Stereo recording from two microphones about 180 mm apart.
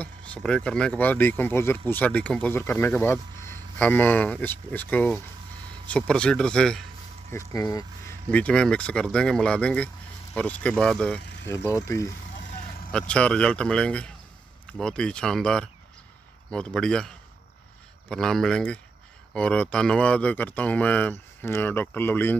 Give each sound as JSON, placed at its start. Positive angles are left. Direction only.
{"t": 0.0, "sound": "speech", "side_deg": 5}
{"t": 7.2, "sound": "speech", "side_deg": 15}
{"t": 8.3, "sound": "speech", "side_deg": 5}
{"t": 11.5, "sound": "speech", "side_deg": 20}
{"t": 12.9, "sound": "speech", "side_deg": 5}
{"t": 18.1, "sound": "speech", "side_deg": 5}